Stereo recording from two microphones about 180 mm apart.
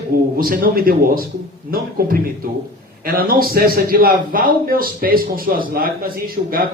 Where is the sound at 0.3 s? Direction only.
55° right (ahead or behind).